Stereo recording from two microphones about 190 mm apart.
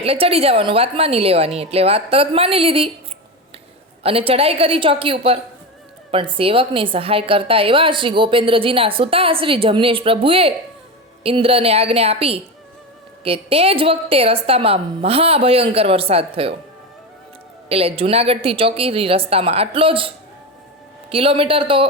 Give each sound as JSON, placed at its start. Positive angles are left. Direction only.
{"t": 0.0, "sound": "a woman's voice", "side_deg": -30}
{"t": 4.0, "sound": "a woman's voice", "side_deg": -30}
{"t": 17.7, "sound": "a woman's voice", "side_deg": -30}